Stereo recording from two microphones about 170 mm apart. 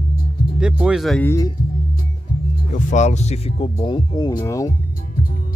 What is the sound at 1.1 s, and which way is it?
Speech, 15° left (ahead or behind).